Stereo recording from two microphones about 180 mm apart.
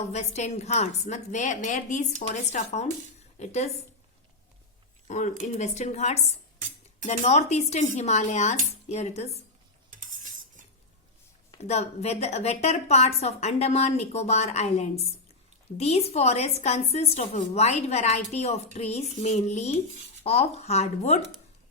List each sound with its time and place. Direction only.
0.0 s a woman's voice: 40° left (ahead or behind)
5.0 s a woman's voice: 40° left (ahead or behind)
11.5 s a woman's voice: 35° left (ahead or behind)